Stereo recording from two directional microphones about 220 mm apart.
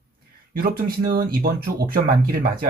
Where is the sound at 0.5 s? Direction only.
45° right (ahead or behind).